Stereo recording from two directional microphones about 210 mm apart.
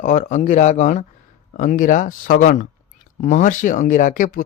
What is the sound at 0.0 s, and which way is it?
Speech, 35° left (ahead or behind).